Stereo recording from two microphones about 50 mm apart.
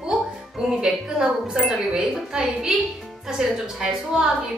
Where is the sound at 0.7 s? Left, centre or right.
Centre.